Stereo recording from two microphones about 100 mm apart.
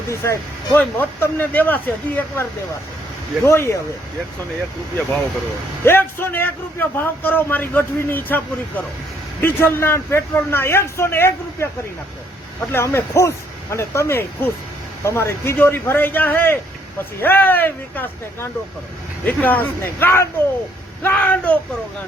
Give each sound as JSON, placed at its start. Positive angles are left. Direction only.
{"t": 0.1, "sound": "a man's voice", "side_deg": 30}
{"t": 0.7, "sound": "a man's voice", "side_deg": 20}
{"t": 5.8, "sound": "a man's voice", "side_deg": 25}
{"t": 9.4, "sound": "a man's voice", "side_deg": 25}
{"t": 12.7, "sound": "a man's voice", "side_deg": 25}